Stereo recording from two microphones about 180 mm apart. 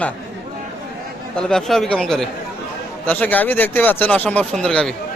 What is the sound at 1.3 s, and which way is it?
A man's voice, centre (ahead or behind).